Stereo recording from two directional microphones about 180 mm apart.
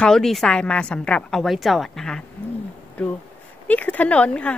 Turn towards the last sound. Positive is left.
turn(degrees=5)  # may be behind; listen again after turning